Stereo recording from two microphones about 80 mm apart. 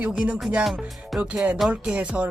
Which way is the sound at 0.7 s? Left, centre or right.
Centre.